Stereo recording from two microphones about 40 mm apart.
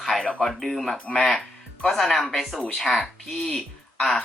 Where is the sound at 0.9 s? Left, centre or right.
Left.